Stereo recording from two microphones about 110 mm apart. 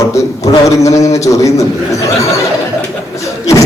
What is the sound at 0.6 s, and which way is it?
A man's voice, 30° left (ahead or behind).